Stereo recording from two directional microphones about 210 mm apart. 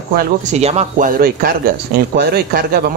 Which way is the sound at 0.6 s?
30° right (ahead or behind).